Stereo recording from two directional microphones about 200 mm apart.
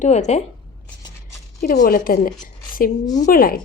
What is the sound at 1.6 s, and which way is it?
Speech, 45° left (ahead or behind).